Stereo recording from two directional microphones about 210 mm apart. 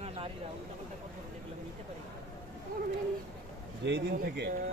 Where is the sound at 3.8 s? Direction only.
55° right (ahead or behind).